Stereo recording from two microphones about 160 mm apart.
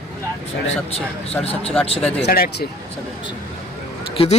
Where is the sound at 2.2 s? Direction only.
80° left.